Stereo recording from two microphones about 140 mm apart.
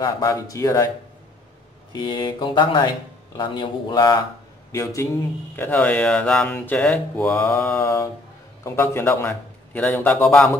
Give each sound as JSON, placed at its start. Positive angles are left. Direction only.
{"t": 0.0, "sound": "speech", "side_deg": 25}
{"t": 1.9, "sound": "speech", "side_deg": 30}
{"t": 4.7, "sound": "speech", "side_deg": 20}